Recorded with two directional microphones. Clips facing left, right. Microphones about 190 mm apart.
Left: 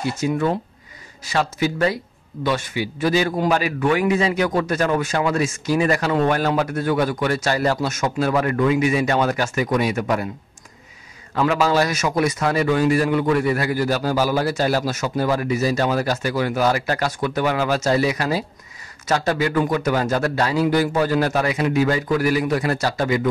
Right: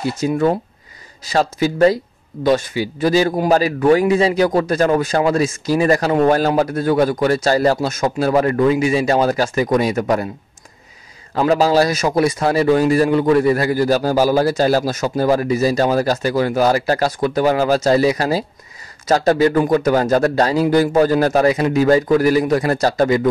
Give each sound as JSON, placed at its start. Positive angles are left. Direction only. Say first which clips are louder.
{"t": 0.2, "sound": "a man's voice", "louder": "right 5 dB", "side_deg": -35}
{"t": 11.3, "sound": "a man's voice", "louder": "right 4 dB", "side_deg": -35}